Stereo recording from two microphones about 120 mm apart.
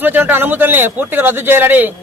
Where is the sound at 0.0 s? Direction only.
15° right (ahead or behind).